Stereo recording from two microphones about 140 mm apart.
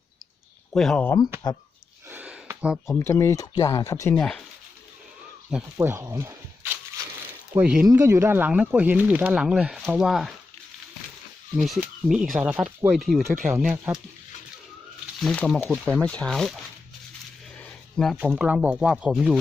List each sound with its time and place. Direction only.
0.7 s speech: 5° left (ahead or behind)
2.0 s a sound: 10° right (ahead or behind)
2.8 s speech: 20° left (ahead or behind)
4.2 s speech: 5° left (ahead or behind)
5.7 s speech: 20° right (ahead or behind)
7.5 s speech: 10° right (ahead or behind)
7.9 s speech: 20° right (ahead or behind); by 10.3 s centre (ahead or behind)
11.5 s speech: centre (ahead or behind)
15.2 s speech: 5° left (ahead or behind)
17.6 s speech: 5° left (ahead or behind)